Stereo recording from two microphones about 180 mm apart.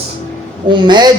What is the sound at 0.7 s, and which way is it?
Speech, 25° right (ahead or behind).